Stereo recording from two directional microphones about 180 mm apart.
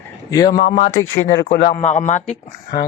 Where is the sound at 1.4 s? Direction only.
45° left (ahead or behind).